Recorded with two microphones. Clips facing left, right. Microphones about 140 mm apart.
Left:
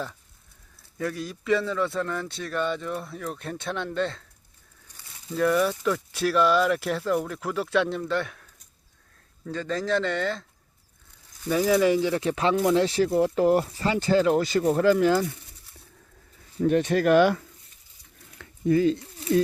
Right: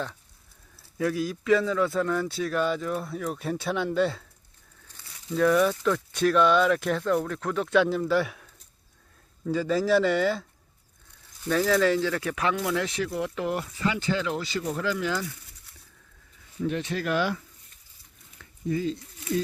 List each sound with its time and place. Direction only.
0.8 s speech: 5° right (ahead or behind)
5.3 s speech: centre (ahead or behind)
9.5 s speech: 5° right (ahead or behind)
11.4 s speech: 15° left (ahead or behind); by 15.3 s 45° left (ahead or behind)
16.6 s speech: 50° left (ahead or behind)
18.3 s a sound: 70° left (ahead or behind)